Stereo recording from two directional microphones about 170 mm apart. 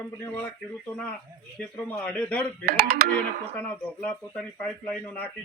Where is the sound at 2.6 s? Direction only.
65° right (ahead or behind).